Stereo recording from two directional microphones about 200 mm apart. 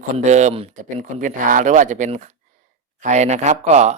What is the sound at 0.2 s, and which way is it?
Speech, 35° right (ahead or behind).